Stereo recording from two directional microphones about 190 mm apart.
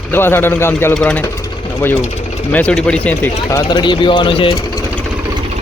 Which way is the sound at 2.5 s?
5° left (ahead or behind).